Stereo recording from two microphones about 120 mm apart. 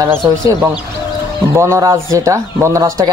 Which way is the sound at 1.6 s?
25° right (ahead or behind).